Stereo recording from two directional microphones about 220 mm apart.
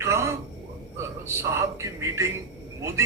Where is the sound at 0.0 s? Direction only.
10° right (ahead or behind).